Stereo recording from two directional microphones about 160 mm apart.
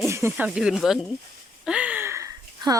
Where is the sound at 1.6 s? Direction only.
10° right (ahead or behind).